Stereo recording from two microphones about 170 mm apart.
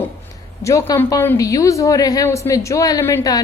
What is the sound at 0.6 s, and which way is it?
A woman's voice, 15° left (ahead or behind).